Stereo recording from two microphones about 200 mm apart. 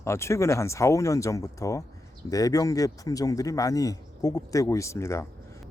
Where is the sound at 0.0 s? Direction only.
15° left (ahead or behind).